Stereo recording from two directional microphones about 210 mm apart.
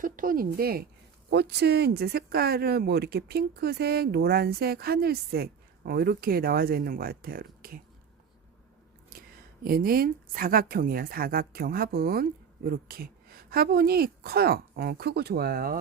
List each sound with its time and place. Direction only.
0.0 s speech: 40° right (ahead or behind)
9.1 s a sound: 45° right (ahead or behind)
9.6 s speech: 45° right (ahead or behind)